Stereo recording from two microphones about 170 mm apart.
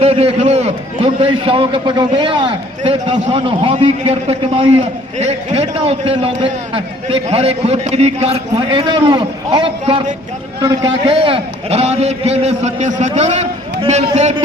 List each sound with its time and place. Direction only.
0.0 s a man's voice: 35° right (ahead or behind)
9.8 s a man's voice: 40° right (ahead or behind)
10.6 s a man's voice: 25° right (ahead or behind)